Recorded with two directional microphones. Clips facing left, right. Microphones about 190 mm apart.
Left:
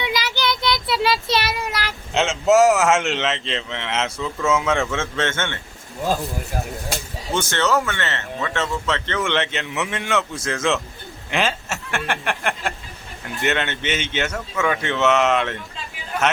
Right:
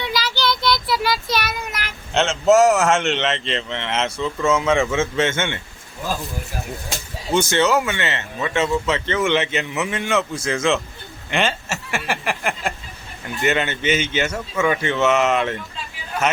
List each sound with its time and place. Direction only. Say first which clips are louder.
0.0 s child singing: right 1 dB; 20° left (ahead or behind)
2.1 s speech: right 1 dB; 5° left (ahead or behind); by 5.5 s 10° right (ahead or behind)
7.3 s speech: right 3 dB; 10° right (ahead or behind)